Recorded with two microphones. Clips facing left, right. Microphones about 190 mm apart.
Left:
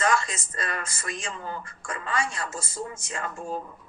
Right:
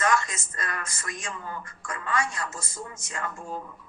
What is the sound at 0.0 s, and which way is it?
A woman's voice, 30° left (ahead or behind).